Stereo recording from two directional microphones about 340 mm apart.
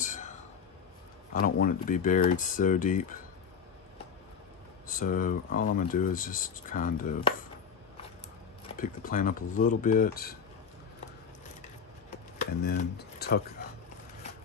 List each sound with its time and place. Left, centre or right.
0.0 s whispering: left
1.3 s speech: left
4.8 s speech: left
8.6 s speech: left
12.4 s speech: left